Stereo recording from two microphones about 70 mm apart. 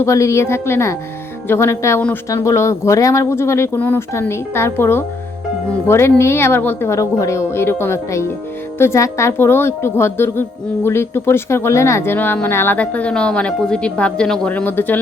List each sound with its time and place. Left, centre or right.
0.0 s speech: left
3.8 s speech: left
12.1 s speech: left; by 14.5 s centre
14.5 s speech: left